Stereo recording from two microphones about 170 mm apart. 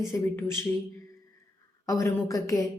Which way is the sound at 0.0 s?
15° left (ahead or behind).